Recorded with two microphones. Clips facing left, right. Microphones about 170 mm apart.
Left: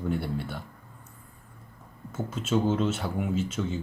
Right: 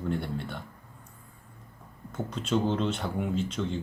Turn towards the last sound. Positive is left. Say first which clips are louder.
# left 1 dB
turn(degrees=5)  # may be behind; listen again after turning